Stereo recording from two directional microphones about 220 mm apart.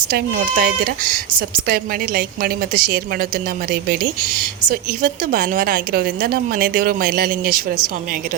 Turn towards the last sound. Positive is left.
turn(degrees=-40)  # may be behind; listen again after turning